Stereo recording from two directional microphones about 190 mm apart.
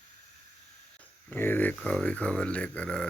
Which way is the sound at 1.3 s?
10° left (ahead or behind).